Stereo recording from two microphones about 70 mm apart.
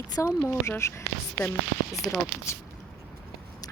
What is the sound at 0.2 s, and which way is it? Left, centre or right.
Speech, left.